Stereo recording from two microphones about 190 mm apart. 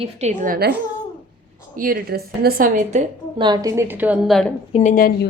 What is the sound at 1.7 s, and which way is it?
Speech, 50° right (ahead or behind).